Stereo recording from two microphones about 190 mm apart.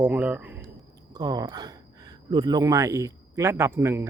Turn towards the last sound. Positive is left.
turn(degrees=-15)  # may be behind; listen again after turning